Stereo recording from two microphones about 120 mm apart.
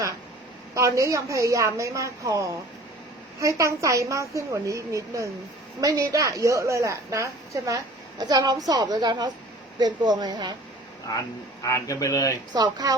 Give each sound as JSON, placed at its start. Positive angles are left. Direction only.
{"t": 0.7, "sound": "a woman's voice", "side_deg": -25}
{"t": 3.6, "sound": "a woman's voice", "side_deg": -25}
{"t": 11.1, "sound": "speech", "side_deg": 30}
{"t": 12.5, "sound": "a woman's voice", "side_deg": -35}